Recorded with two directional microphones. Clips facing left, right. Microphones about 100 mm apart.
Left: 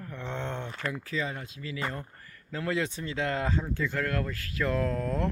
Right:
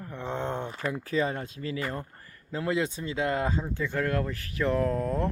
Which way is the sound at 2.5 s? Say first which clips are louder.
Right 2 dB; 20° right (ahead or behind).